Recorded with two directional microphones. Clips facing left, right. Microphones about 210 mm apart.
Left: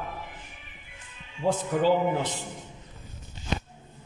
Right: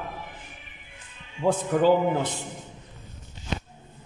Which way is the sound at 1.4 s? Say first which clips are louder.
Right 2 dB; 60° right (ahead or behind).